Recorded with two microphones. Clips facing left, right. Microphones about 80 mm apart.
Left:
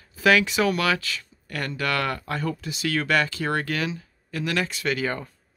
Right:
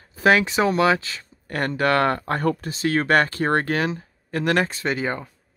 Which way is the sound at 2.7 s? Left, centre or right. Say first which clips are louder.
Right 3 dB; right.